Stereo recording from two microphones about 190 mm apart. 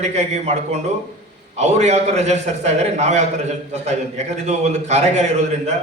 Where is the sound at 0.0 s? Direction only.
35° right (ahead or behind).